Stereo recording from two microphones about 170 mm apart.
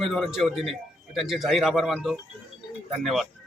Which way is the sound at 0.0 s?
Centre (ahead or behind).